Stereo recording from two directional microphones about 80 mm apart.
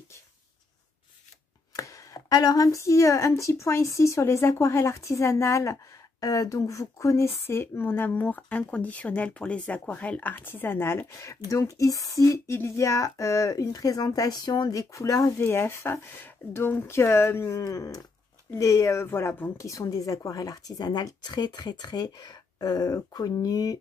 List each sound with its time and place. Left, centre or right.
1.8 s speech: left
11.1 s speech: left
15.3 s speech: left
19.5 s speech: left